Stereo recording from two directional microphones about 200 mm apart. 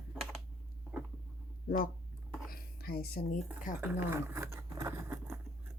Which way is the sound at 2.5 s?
50° left (ahead or behind).